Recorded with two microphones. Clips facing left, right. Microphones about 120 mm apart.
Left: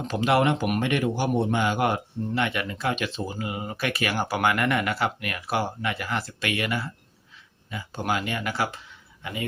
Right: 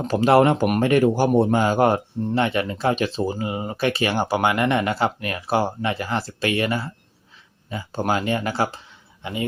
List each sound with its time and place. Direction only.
0.0 s a man's voice: 40° right (ahead or behind)